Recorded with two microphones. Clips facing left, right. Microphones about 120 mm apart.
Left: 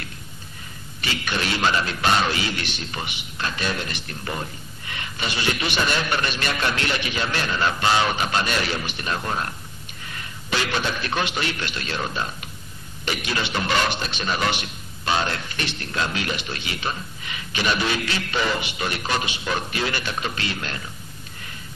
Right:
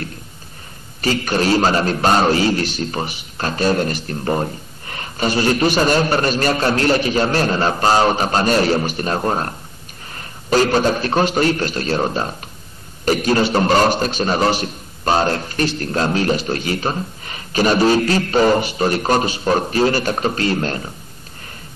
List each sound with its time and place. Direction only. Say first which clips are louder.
1.0 s a man's voice: right 10 dB; 40° right (ahead or behind)